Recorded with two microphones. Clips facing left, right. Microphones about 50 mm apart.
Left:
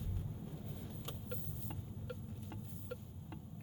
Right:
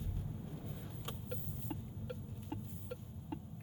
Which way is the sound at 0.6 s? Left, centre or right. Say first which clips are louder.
Even; centre.